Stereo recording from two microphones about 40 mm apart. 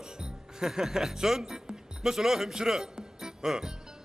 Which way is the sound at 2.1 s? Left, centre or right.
Centre.